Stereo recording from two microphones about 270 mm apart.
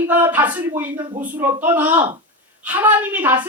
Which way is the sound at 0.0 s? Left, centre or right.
Centre.